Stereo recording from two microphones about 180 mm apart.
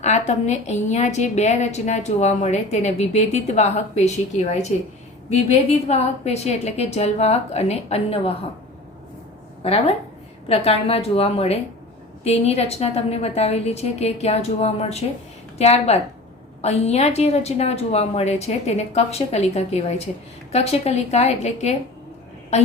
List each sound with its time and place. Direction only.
0.0 s a woman's voice: 40° left (ahead or behind)
9.6 s a woman's voice: 35° left (ahead or behind)